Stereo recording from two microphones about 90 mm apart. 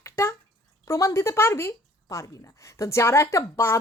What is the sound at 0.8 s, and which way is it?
A woman's voice, 30° left (ahead or behind).